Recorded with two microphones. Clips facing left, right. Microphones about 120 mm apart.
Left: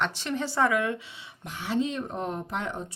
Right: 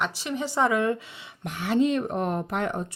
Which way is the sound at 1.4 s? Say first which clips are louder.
Right 5 dB; 60° right (ahead or behind).